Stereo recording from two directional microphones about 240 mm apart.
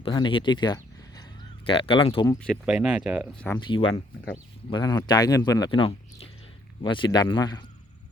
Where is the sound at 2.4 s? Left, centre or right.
Centre.